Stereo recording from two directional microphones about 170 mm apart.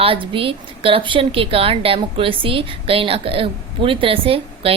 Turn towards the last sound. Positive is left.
turn(degrees=-35)  # may be behind; listen again after turning